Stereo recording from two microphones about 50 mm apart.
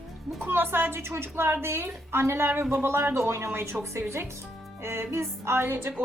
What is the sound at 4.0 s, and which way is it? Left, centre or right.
Speech, right.